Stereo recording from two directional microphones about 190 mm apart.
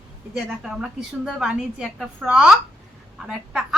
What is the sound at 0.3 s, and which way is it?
A woman's voice, centre (ahead or behind).